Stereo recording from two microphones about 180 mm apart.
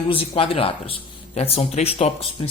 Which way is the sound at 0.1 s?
30° left (ahead or behind).